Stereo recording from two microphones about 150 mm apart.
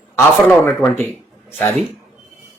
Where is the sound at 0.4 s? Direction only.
15° left (ahead or behind).